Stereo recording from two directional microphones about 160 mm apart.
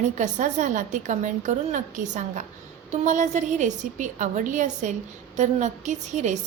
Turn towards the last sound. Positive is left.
turn(degrees=-50)  # may be behind; listen again after turning